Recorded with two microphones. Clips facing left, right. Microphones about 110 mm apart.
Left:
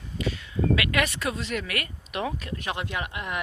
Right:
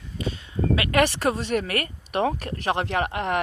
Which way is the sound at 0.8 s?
35° right (ahead or behind).